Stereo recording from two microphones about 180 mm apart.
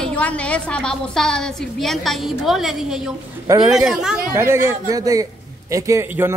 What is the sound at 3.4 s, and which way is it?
Speech, 20° right (ahead or behind).